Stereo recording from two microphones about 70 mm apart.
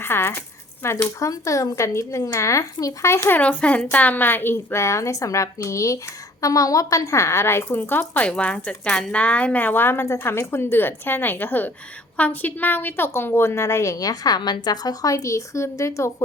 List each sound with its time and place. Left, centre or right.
0.0 s speech: left
1.3 s a woman's voice: left
3.4 s a woman's voice: centre
8.3 s a woman's voice: centre; by 16.1 s left